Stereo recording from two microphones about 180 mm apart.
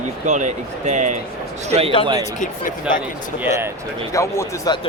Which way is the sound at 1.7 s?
35° right (ahead or behind).